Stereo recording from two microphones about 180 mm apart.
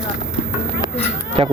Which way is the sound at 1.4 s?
35° right (ahead or behind).